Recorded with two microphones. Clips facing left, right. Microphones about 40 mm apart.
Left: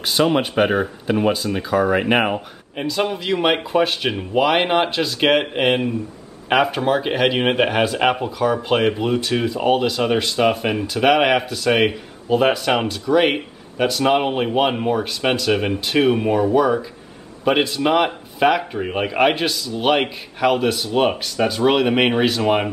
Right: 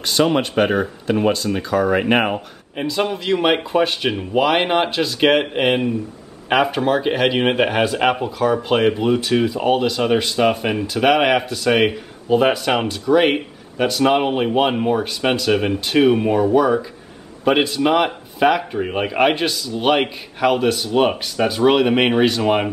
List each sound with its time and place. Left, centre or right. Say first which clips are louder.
0.0 s speech: even; centre